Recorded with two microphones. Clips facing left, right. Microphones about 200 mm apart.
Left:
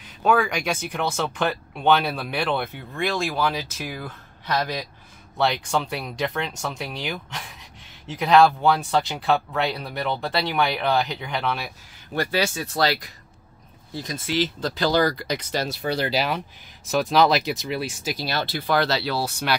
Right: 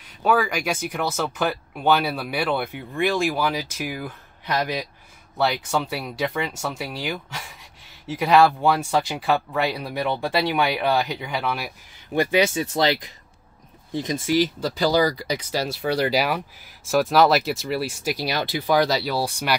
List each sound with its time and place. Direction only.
0.2 s speech: 5° right (ahead or behind)